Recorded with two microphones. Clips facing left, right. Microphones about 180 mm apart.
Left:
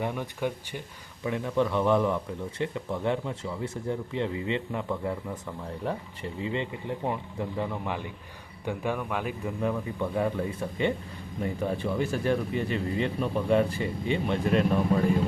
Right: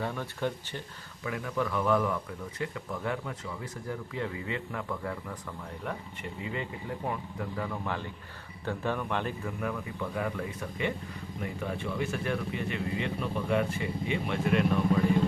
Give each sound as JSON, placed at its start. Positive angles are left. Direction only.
{"t": 0.0, "sound": "speech", "side_deg": 15}
{"t": 1.2, "sound": "speech", "side_deg": 25}
{"t": 9.5, "sound": "speech", "side_deg": 25}